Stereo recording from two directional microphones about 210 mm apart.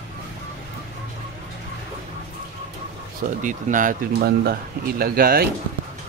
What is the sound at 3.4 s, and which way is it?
Speech, 40° right (ahead or behind).